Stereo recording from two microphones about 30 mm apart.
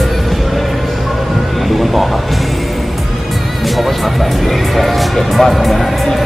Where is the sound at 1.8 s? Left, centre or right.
Centre.